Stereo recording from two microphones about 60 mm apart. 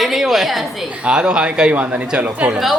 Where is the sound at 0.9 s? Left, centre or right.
Centre.